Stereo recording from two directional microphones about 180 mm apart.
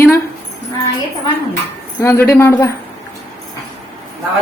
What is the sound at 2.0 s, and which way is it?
Speech, 15° left (ahead or behind).